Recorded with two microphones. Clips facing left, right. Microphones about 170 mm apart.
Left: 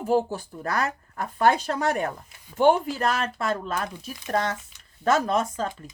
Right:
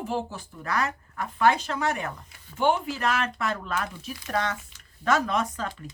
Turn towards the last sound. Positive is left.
turn(degrees=40)  # may be behind; listen again after turning